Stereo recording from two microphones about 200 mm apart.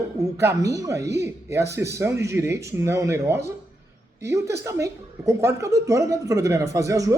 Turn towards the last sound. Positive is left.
turn(degrees=-15)  # may be behind; listen again after turning